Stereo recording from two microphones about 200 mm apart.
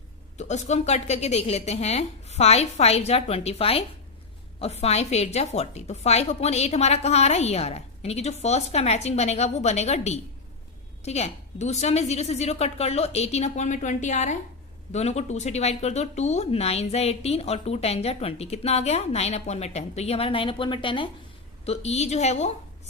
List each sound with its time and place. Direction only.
0.3 s speech: 35° left (ahead or behind)